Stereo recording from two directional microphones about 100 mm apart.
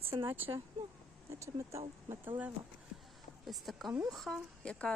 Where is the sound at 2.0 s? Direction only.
20° right (ahead or behind).